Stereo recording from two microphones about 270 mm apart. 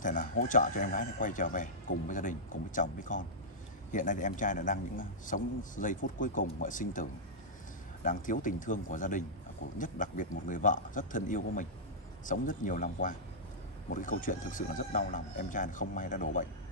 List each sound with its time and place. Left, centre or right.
0.0 s a man's voice: left